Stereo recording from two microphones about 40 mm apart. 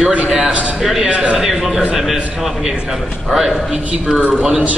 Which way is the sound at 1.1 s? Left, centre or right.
Right.